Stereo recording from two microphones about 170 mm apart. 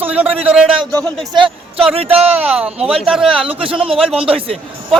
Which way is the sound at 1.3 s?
30° right (ahead or behind).